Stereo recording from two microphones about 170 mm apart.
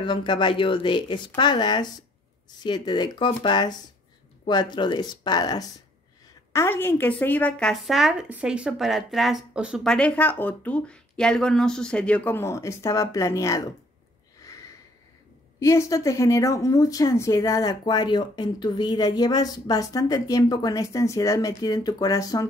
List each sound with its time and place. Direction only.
0.0 s speech: 30° left (ahead or behind); by 9.9 s 5° right (ahead or behind)
9.9 s speech: 5° left (ahead or behind)
14.4 s a sound: 20° left (ahead or behind)
15.6 s speech: 15° left (ahead or behind)